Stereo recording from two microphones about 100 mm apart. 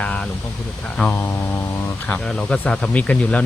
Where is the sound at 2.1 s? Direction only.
5° left (ahead or behind).